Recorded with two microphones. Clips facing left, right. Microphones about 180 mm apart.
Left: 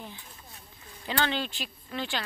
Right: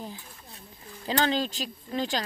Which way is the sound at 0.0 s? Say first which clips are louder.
Right 4 dB; 35° right (ahead or behind).